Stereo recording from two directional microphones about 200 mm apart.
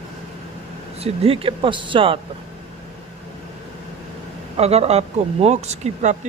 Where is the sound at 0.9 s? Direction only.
30° right (ahead or behind).